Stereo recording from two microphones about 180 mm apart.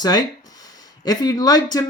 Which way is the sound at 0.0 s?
20° left (ahead or behind).